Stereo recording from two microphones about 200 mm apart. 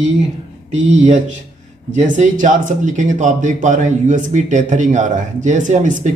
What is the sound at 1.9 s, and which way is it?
Speech, 35° right (ahead or behind).